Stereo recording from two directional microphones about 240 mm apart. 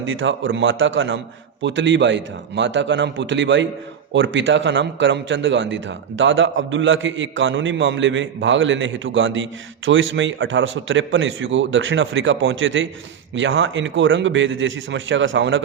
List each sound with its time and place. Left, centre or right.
0.0 s a man's voice: right